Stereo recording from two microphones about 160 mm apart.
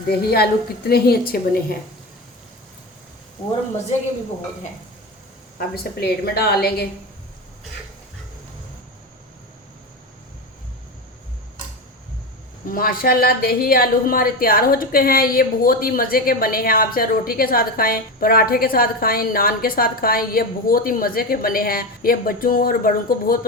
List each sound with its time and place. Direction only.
0.1 s a woman's voice: 75° left (ahead or behind)
5.5 s a woman's voice: 70° left (ahead or behind)
12.7 s a woman's voice: 65° left (ahead or behind)